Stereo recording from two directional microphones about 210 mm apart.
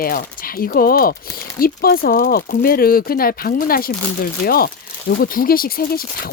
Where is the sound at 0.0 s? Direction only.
45° left (ahead or behind).